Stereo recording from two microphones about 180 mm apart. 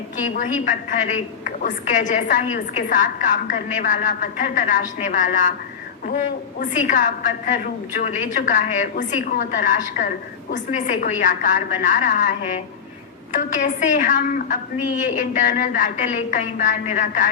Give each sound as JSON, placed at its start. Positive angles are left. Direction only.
{"t": 0.3, "sound": "a woman's voice", "side_deg": 45}
{"t": 6.6, "sound": "a woman's voice", "side_deg": 45}